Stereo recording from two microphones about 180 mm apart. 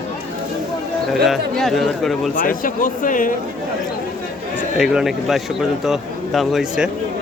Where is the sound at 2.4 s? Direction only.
50° left (ahead or behind).